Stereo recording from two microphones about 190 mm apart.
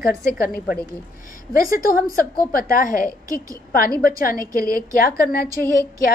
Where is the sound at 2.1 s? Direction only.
50° left (ahead or behind).